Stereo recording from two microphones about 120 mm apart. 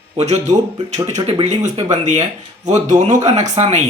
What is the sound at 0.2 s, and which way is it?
Speech, 70° right (ahead or behind).